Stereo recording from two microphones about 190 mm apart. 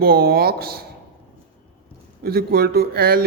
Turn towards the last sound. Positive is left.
turn(degrees=-55)  # may be behind; listen again after turning